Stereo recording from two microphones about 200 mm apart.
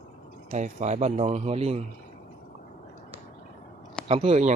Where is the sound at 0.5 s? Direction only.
35° right (ahead or behind).